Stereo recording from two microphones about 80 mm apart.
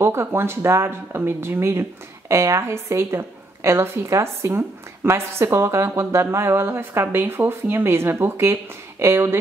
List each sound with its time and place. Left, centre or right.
0.0 s speech: right